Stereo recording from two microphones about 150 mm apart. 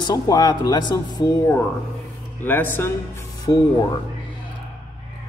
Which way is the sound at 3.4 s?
25° left (ahead or behind).